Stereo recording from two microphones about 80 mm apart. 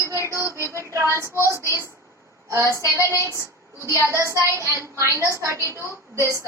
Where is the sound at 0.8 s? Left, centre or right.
Right.